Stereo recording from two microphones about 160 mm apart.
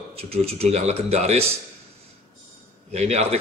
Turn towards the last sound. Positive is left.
turn(degrees=-40)  # may be behind; listen again after turning